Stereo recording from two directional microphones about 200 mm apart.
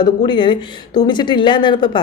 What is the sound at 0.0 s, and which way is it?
Speech, 20° left (ahead or behind).